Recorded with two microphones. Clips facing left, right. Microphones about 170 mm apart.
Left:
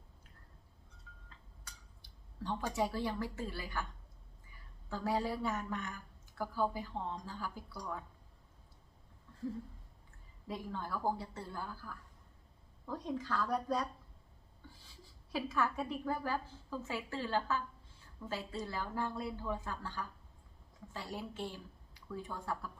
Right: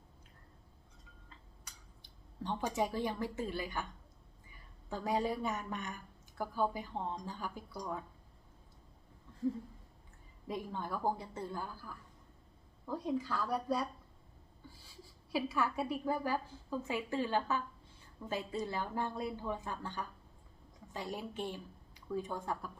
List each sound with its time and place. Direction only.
1.1 s a sound: 10° right (ahead or behind)
1.6 s speech: 20° right (ahead or behind)
4.9 s a woman's voice: 20° right (ahead or behind)
10.4 s a woman's voice: 20° right (ahead or behind)
15.3 s a woman's voice: 10° right (ahead or behind)